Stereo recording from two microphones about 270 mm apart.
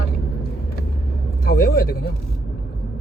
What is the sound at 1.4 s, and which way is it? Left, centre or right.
Speech, left.